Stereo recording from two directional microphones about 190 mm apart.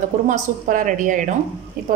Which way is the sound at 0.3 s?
45° right (ahead or behind).